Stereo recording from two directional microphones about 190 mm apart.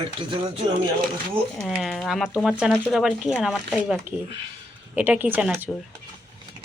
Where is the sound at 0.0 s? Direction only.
30° right (ahead or behind).